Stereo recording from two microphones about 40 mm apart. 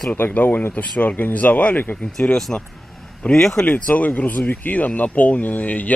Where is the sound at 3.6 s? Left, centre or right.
Left.